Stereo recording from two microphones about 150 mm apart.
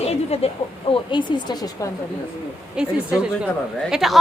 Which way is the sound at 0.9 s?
30° left (ahead or behind).